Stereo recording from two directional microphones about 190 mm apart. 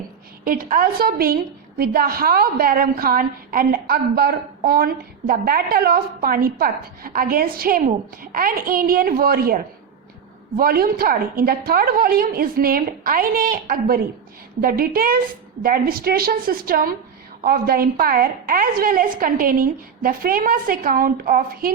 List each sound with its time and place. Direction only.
0.4 s a woman's voice: 50° right (ahead or behind)